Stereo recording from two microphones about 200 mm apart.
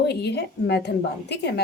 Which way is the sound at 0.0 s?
55° left (ahead or behind).